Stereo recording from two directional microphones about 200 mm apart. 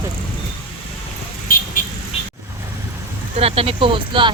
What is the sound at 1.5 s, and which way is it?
Vehicle, 45° left (ahead or behind).